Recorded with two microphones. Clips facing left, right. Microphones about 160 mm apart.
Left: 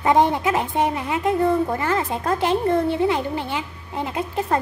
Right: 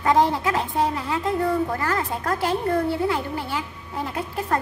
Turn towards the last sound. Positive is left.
turn(degrees=20)  # may be behind; listen again after turning